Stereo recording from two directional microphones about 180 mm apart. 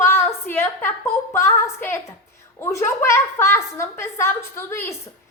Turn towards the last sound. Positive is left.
turn(degrees=15)  # may be behind; listen again after turning